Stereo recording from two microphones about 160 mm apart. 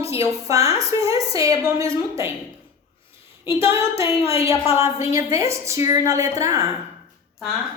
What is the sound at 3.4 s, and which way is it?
Female singing, 15° right (ahead or behind).